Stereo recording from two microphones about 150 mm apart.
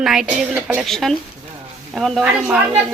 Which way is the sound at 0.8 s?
Centre (ahead or behind).